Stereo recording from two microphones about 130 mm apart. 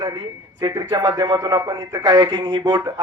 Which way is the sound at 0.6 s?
30° right (ahead or behind).